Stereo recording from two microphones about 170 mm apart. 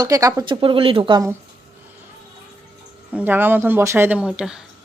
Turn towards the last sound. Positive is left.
turn(degrees=-5)  # may be behind; listen again after turning